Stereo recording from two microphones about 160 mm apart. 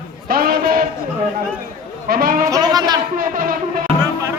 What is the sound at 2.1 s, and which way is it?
Speech, 65° right (ahead or behind).